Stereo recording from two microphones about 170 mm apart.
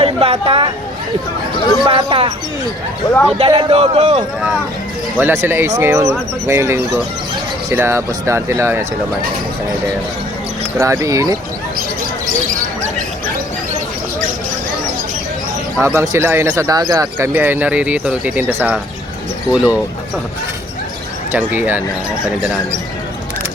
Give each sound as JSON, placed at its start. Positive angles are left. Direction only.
{"t": 0.0, "sound": "a sound", "side_deg": -35}
{"t": 1.8, "sound": "a man's voice", "side_deg": -30}
{"t": 3.1, "sound": "speech", "side_deg": 5}
{"t": 3.3, "sound": "a man's voice", "side_deg": -35}
{"t": 5.1, "sound": "speech", "side_deg": -15}
{"t": 10.8, "sound": "speech", "side_deg": -15}
{"t": 15.8, "sound": "speech", "side_deg": -15}
{"t": 21.3, "sound": "speech", "side_deg": -10}